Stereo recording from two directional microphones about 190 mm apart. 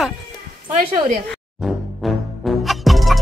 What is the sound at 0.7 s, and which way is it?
Speech, 35° right (ahead or behind).